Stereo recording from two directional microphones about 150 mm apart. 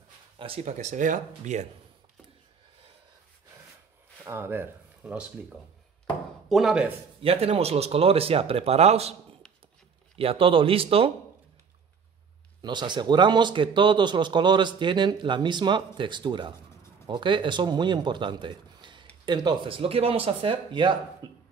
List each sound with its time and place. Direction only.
0.4 s speech: 40° right (ahead or behind)
4.2 s speech: 15° right (ahead or behind)
6.5 s speech: 5° right (ahead or behind)
7.2 s a man's voice: 40° right (ahead or behind)
10.1 s a man's voice: 40° right (ahead or behind)
12.6 s a man's voice: 30° right (ahead or behind)